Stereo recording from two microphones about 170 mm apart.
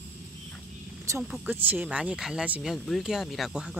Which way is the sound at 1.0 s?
15° right (ahead or behind).